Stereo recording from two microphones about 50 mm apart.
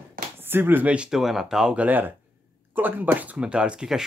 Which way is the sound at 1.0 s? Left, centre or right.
Centre.